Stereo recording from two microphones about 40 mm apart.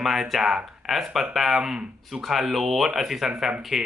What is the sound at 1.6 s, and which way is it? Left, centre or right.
Speech, centre.